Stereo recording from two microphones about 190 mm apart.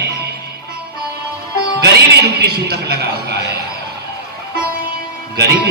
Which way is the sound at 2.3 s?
55° right (ahead or behind).